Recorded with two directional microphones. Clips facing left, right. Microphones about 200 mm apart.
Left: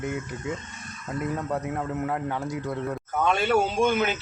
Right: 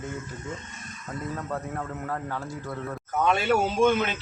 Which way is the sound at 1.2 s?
15° left (ahead or behind).